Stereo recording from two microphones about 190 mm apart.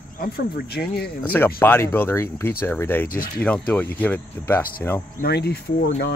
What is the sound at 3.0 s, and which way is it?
Speech, 50° left (ahead or behind).